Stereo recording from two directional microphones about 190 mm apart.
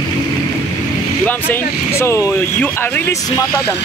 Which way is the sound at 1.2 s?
10° left (ahead or behind).